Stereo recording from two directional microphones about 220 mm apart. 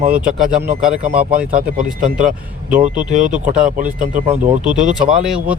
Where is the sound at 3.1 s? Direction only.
35° right (ahead or behind).